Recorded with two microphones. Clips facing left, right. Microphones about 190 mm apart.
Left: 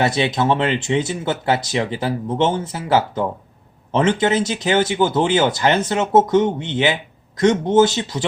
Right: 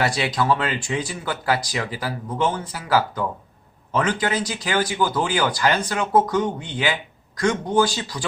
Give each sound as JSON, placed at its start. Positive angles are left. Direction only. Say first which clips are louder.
{"t": 0.0, "sound": "speech", "louder": "left 4 dB", "side_deg": 20}